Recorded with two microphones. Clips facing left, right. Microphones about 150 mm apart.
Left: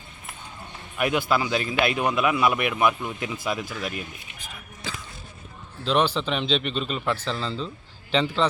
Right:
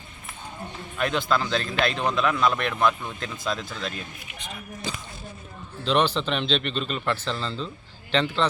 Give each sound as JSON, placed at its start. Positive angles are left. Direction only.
{"t": 0.9, "sound": "a man's voice", "side_deg": 10}
{"t": 4.9, "sound": "speech", "side_deg": -15}
{"t": 5.8, "sound": "a man's voice", "side_deg": 5}